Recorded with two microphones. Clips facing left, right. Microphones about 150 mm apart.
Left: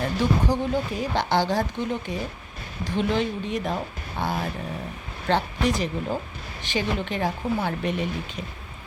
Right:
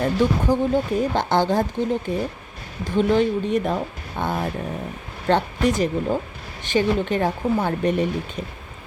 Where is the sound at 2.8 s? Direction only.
50° right (ahead or behind).